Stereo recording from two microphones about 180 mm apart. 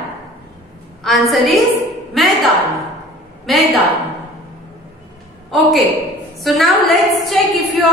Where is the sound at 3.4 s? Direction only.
Centre (ahead or behind).